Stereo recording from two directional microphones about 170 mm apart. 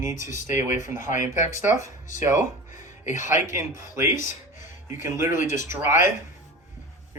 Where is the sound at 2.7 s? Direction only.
45° left (ahead or behind).